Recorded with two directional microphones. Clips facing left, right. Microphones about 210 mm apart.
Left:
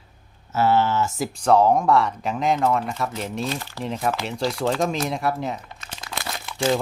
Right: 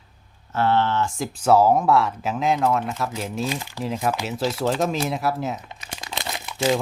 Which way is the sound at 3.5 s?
15° right (ahead or behind).